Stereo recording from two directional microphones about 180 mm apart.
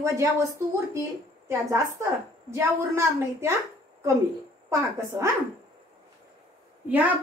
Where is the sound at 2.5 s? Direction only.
15° right (ahead or behind).